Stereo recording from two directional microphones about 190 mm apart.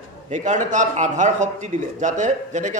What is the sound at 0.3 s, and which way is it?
Speech, 40° right (ahead or behind).